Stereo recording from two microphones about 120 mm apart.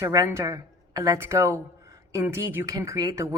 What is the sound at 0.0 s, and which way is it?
Speech, 25° right (ahead or behind).